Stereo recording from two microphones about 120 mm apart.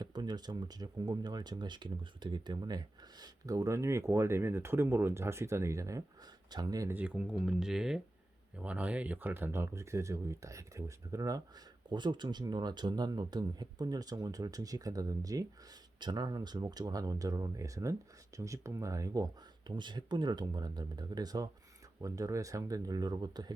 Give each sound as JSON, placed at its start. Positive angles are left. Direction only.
{"t": 0.0, "sound": "speech", "side_deg": -35}
{"t": 6.8, "sound": "speech", "side_deg": -15}